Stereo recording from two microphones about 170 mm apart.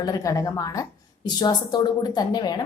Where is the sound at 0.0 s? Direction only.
20° left (ahead or behind).